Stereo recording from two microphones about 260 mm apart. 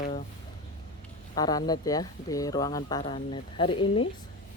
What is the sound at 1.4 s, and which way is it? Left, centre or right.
Speech, centre.